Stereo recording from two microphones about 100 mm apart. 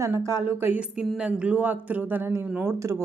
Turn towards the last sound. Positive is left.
turn(degrees=-30)  # may be behind; listen again after turning